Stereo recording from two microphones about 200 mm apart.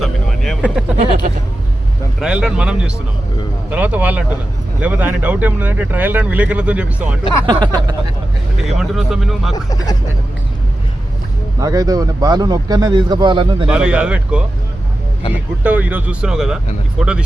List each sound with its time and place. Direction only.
0.0 s speech: centre (ahead or behind)
2.2 s a man's voice: 5° right (ahead or behind)
7.4 s a man's voice: 20° right (ahead or behind)
8.8 s a man's voice: centre (ahead or behind)
9.6 s speech: 20° left (ahead or behind)
11.6 s a man's voice: 15° right (ahead or behind)
13.7 s a man's voice: 5° right (ahead or behind)